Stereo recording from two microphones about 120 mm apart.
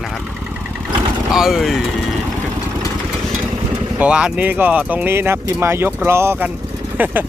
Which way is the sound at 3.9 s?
10° right (ahead or behind).